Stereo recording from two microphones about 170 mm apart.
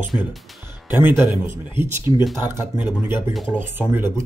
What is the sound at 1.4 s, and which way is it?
Speech, 15° right (ahead or behind).